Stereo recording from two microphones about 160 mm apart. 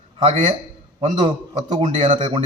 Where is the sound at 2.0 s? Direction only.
30° right (ahead or behind).